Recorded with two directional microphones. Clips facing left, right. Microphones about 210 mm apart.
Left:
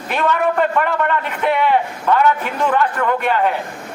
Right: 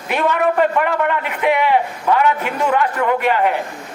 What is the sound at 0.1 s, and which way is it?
A man's voice, 10° right (ahead or behind).